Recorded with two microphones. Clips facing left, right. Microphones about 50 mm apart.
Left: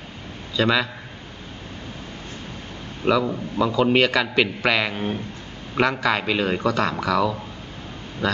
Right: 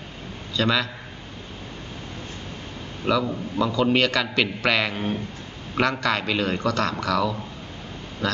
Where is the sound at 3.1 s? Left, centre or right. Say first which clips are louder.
Left 3 dB; centre.